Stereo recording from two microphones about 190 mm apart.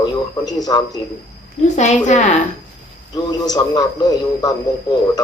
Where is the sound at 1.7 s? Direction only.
40° left (ahead or behind).